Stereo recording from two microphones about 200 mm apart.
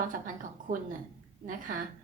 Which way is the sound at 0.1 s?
40° right (ahead or behind).